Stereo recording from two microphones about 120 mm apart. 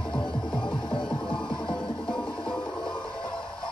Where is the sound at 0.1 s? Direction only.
45° left (ahead or behind).